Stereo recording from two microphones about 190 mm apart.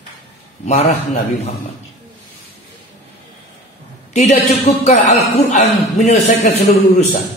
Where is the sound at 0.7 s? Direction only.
35° left (ahead or behind).